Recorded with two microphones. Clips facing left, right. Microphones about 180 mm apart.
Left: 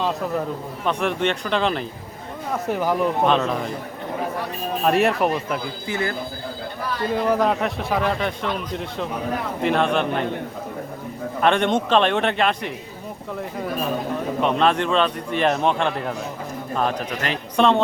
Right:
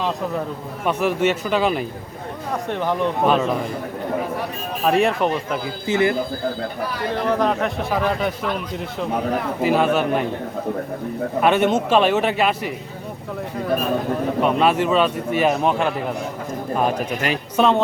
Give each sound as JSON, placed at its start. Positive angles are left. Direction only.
{"t": 0.9, "sound": "a man's voice", "side_deg": -5}
{"t": 2.6, "sound": "a man's voice", "side_deg": 5}
{"t": 3.2, "sound": "a man's voice", "side_deg": -5}
{"t": 4.9, "sound": "a man's voice", "side_deg": 0}
{"t": 5.9, "sound": "speech", "side_deg": -20}
{"t": 7.3, "sound": "a man's voice", "side_deg": 5}
{"t": 9.6, "sound": "a man's voice", "side_deg": -5}
{"t": 11.4, "sound": "a man's voice", "side_deg": -5}
{"t": 14.4, "sound": "a man's voice", "side_deg": -5}